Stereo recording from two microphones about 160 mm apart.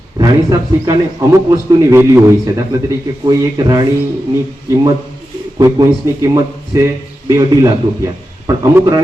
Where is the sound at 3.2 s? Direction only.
25° right (ahead or behind).